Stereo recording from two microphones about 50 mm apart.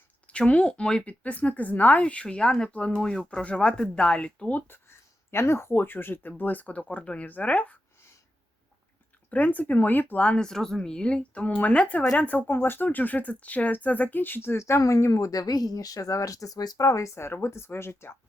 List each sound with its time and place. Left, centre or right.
0.3 s speech: left
1.0 s speech: left
2.6 s speech: left
3.0 s speech: centre
4.7 s speech: left
9.3 s speech: left
10.2 s speech: left
12.5 s speech: left
14.5 s speech: left